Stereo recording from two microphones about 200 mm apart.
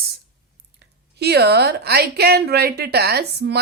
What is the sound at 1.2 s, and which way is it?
A woman's voice, 55° right (ahead or behind).